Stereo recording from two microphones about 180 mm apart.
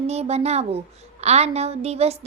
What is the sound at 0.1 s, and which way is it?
A child's voice, 35° right (ahead or behind).